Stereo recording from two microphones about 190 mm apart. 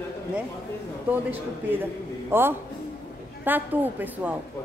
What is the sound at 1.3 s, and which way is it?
Speech, 10° right (ahead or behind).